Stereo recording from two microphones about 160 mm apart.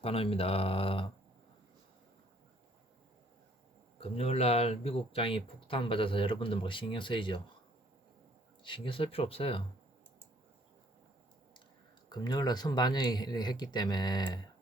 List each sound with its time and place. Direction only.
0.0 s speech: 40° left (ahead or behind)
4.0 s speech: 40° left (ahead or behind)
8.6 s speech: 30° left (ahead or behind)
12.0 s speech: 25° left (ahead or behind)